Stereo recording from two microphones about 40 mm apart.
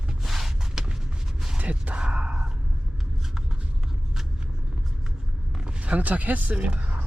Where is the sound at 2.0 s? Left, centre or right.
Right.